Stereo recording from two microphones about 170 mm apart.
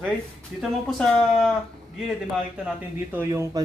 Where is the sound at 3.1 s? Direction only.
15° right (ahead or behind).